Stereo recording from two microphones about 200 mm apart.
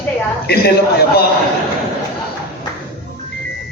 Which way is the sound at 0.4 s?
50° left (ahead or behind).